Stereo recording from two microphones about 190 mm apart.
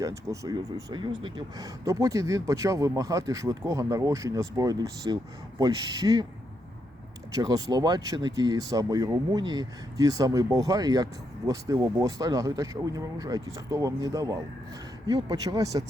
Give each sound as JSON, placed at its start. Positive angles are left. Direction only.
{"t": 0.0, "sound": "speech", "side_deg": -15}
{"t": 7.3, "sound": "speech", "side_deg": -20}